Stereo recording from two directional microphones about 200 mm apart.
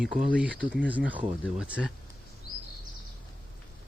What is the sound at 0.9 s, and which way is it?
Speech, 10° right (ahead or behind).